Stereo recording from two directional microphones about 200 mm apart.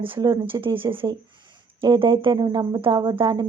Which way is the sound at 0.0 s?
25° right (ahead or behind).